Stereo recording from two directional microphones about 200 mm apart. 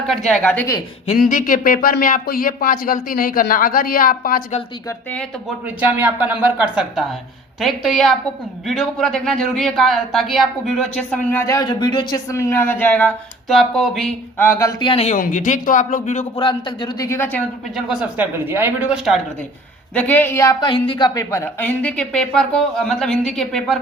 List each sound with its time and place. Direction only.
0.3 s a woman's voice: 5° left (ahead or behind)
1.2 s speech: 40° left (ahead or behind)
5.6 s a woman's voice: 10° right (ahead or behind)
14.3 s speech: 15° left (ahead or behind)
17.7 s a woman's voice: 5° right (ahead or behind)
19.9 s a woman's voice: 10° left (ahead or behind)